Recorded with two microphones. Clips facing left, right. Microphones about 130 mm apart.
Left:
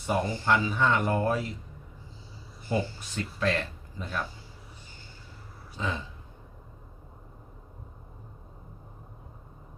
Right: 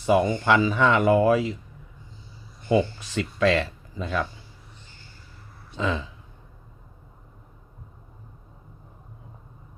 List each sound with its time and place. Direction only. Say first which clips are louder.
0.0 s speech: right 8 dB; 90° right
2.6 s speech: right 8 dB; 90° right
5.7 s speech: right 6 dB; 90° right